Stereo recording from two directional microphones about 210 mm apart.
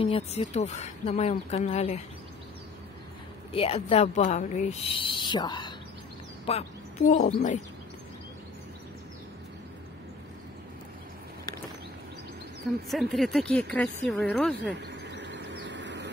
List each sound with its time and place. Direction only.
0.0 s speech: 30° left (ahead or behind)
3.5 s speech: 25° left (ahead or behind)
7.1 s speech: 40° left (ahead or behind)
12.8 s speech: centre (ahead or behind)
14.8 s bird: 55° right (ahead or behind)